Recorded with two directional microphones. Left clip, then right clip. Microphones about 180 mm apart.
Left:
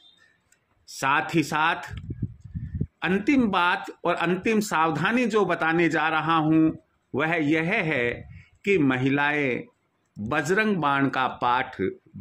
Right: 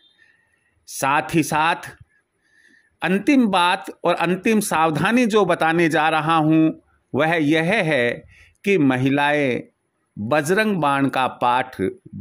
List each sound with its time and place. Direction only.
0.8 s speech: 50° right (ahead or behind)
3.0 s speech: 45° right (ahead or behind)